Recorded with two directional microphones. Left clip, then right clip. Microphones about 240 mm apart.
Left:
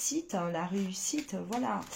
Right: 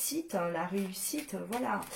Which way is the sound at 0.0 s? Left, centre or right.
Left.